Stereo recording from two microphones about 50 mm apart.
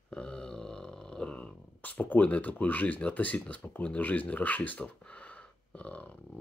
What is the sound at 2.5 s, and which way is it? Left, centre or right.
Speech, left.